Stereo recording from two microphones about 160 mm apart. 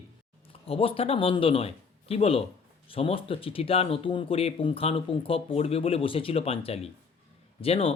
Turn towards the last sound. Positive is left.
turn(degrees=35)  # may be behind; listen again after turning